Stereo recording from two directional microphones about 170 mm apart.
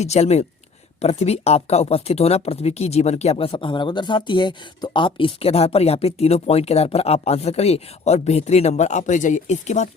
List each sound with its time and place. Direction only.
0.0 s speech: 40° left (ahead or behind)